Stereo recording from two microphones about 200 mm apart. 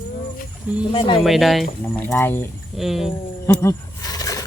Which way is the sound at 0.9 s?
25° left (ahead or behind).